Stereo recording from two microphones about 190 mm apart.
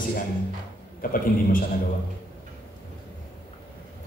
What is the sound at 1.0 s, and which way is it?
Speech, 50° left (ahead or behind).